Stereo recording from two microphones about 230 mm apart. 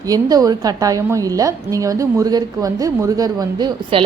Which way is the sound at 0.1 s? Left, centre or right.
Centre.